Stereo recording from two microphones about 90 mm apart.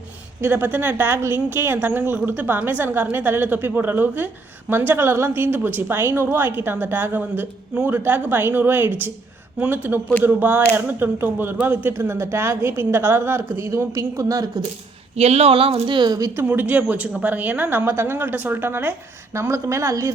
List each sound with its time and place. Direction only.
0.4 s a woman's voice: 20° right (ahead or behind); by 14.6 s 40° right (ahead or behind)
15.4 s a woman's voice: 90° right; by 16.1 s 60° right (ahead or behind)
16.4 s a woman's voice: 20° right (ahead or behind)